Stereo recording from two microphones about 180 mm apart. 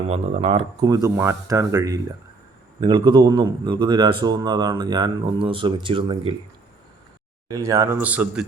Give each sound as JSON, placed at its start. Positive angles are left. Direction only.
{"t": 0.1, "sound": "speech", "side_deg": -35}
{"t": 0.9, "sound": "speech", "side_deg": -20}
{"t": 7.4, "sound": "a man's voice", "side_deg": -20}